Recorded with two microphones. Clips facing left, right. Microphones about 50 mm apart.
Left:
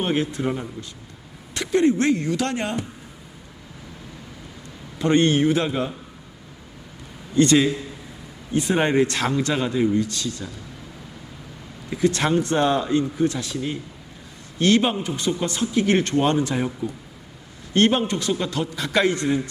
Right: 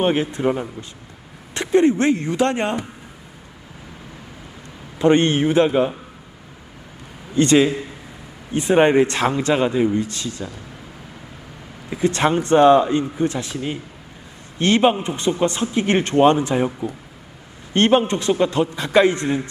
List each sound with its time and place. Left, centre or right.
0.0 s speech: right
4.9 s speech: right
7.3 s speech: right
11.9 s speech: centre